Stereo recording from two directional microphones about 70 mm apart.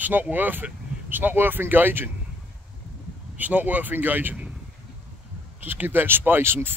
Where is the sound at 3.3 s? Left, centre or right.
Right.